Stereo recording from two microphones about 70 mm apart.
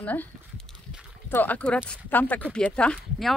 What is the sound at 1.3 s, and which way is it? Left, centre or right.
Speech, left.